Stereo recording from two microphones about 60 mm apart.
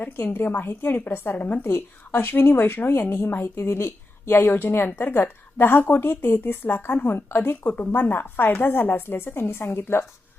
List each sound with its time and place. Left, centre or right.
0.0 s a woman's voice: left
3.6 s a woman's voice: left